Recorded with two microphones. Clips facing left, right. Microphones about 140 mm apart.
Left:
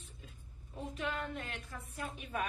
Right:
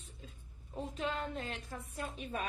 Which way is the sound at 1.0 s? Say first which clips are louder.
Right 1 dB; 30° right (ahead or behind).